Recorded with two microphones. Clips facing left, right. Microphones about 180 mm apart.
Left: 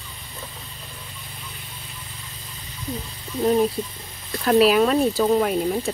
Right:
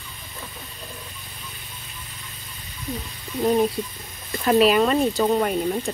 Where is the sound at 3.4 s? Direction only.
5° right (ahead or behind).